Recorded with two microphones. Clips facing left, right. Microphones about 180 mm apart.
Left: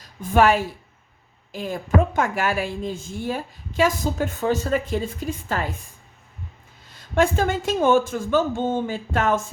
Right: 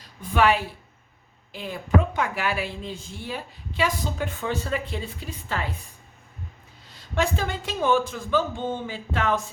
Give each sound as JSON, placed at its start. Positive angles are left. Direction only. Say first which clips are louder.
{"t": 0.0, "sound": "a woman's voice", "louder": "left 4 dB", "side_deg": 45}
{"t": 7.2, "sound": "a woman's voice", "louder": "left 6 dB", "side_deg": 50}